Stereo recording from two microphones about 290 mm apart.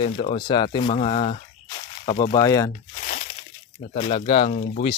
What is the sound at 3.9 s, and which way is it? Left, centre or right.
Speech, centre.